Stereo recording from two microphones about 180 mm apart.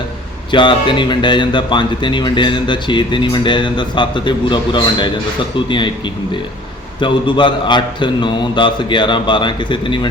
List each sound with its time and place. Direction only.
0.5 s speech: 25° left (ahead or behind)
7.0 s speech: 25° left (ahead or behind)